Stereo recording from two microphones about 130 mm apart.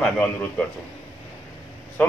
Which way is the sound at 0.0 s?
10° left (ahead or behind).